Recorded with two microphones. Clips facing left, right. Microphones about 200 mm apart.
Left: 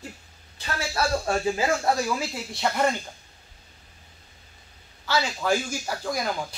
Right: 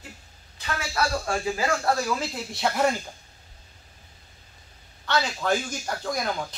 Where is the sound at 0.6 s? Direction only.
30° left (ahead or behind).